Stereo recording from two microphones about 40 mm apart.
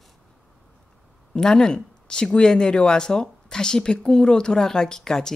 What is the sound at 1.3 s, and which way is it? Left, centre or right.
Speech, centre.